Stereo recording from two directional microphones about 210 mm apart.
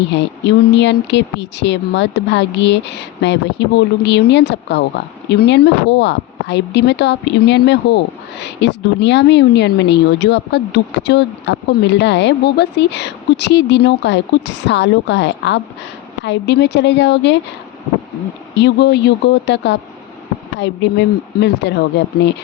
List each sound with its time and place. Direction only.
0.1 s a woman's voice: 55° left (ahead or behind)
18.5 s a woman's voice: 55° left (ahead or behind)